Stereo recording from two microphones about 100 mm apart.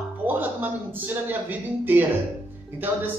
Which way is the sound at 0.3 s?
20° right (ahead or behind).